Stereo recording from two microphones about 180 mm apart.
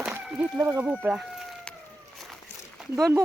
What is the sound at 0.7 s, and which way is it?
Speech, 10° right (ahead or behind).